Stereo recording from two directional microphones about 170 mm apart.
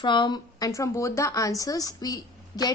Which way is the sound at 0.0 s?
25° left (ahead or behind).